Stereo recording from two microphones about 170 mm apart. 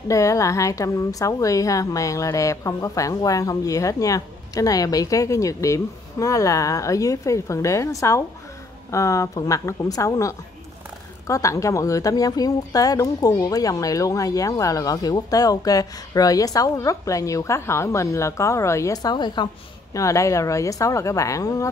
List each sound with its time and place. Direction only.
0.1 s speech: 20° left (ahead or behind)